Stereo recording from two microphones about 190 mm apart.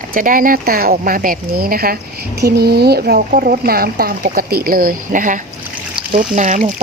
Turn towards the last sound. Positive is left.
turn(degrees=-40)  # may be behind; listen again after turning